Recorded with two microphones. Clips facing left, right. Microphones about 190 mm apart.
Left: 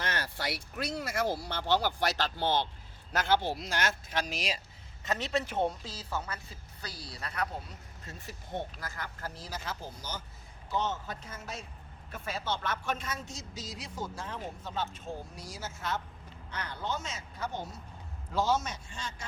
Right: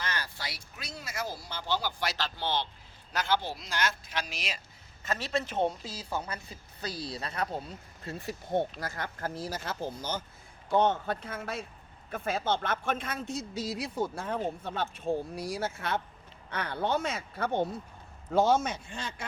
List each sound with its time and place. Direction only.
0.0 s speech: 60° left (ahead or behind); by 4.6 s 40° left (ahead or behind)
5.0 s a man's voice: 20° left (ahead or behind)
5.8 s speech: 10° right (ahead or behind)
8.0 s speech: 35° right (ahead or behind)
8.9 s speech: 50° right (ahead or behind)